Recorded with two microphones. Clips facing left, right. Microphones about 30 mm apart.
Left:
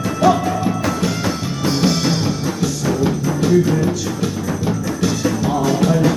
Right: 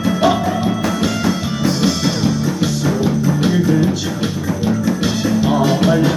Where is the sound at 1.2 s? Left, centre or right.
Centre.